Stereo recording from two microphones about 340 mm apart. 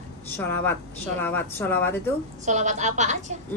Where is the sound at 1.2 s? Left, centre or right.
Centre.